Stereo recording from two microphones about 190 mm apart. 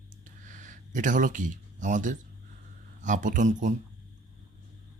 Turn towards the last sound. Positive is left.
turn(degrees=-40)  # may be behind; listen again after turning